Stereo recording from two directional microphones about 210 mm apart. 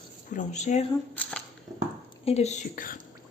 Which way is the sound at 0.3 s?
35° left (ahead or behind).